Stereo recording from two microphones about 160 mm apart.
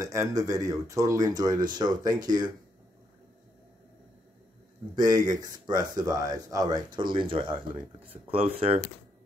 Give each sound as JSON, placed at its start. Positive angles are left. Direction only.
{"t": 0.0, "sound": "speech", "side_deg": -20}
{"t": 4.9, "sound": "speech", "side_deg": -25}